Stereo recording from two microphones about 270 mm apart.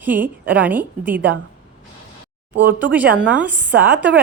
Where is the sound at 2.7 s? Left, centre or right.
Centre.